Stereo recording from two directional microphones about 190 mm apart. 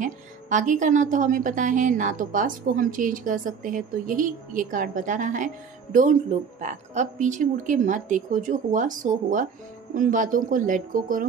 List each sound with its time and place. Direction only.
0.0 s a woman's voice: 40° right (ahead or behind)